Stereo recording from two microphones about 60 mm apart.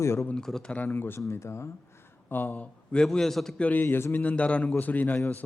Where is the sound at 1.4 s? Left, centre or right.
Left.